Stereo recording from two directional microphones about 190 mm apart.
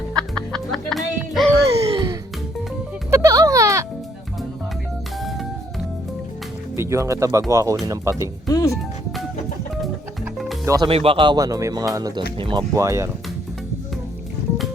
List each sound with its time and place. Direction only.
0.2 s music: 5° left (ahead or behind)
1.5 s a sound: 20° right (ahead or behind)
3.1 s music: 15° right (ahead or behind)
6.7 s speech: 15° right (ahead or behind)
8.4 s speech: 20° left (ahead or behind)
10.7 s speech: 25° right (ahead or behind)
12.7 s speech: 15° right (ahead or behind)